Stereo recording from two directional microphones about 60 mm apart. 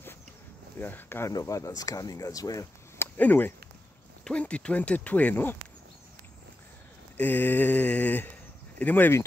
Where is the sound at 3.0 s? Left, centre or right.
Left.